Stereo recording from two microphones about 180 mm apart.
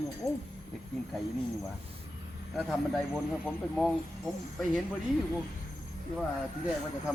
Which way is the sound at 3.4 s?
5° left (ahead or behind).